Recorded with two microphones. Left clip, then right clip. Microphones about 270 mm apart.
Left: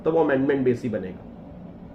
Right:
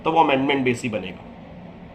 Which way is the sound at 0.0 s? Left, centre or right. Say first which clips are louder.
Right 3 dB; right.